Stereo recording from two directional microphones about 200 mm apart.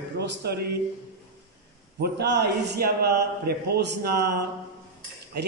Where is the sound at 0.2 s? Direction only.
55° right (ahead or behind).